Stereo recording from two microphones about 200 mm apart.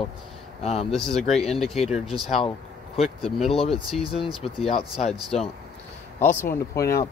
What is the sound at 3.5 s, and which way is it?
Speech, 30° left (ahead or behind).